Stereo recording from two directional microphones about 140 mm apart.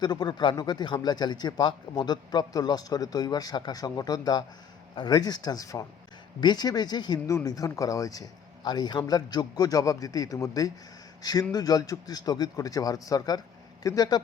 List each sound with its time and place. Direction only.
0.0 s a man's voice: 30° left (ahead or behind)